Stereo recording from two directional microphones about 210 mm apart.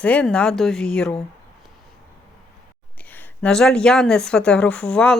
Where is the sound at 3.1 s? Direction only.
5° left (ahead or behind).